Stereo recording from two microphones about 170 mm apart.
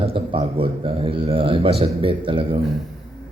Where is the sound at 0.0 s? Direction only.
30° right (ahead or behind).